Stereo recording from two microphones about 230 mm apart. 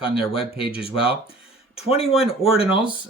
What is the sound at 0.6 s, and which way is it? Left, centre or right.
Speech, left.